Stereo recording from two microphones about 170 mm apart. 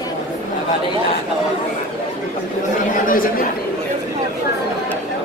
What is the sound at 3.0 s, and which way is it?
Speech, 55° left (ahead or behind).